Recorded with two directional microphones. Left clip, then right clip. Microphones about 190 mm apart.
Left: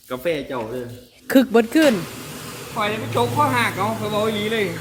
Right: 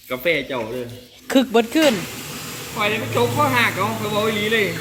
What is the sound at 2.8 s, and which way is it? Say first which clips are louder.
Speech: right 2 dB; 10° left (ahead or behind).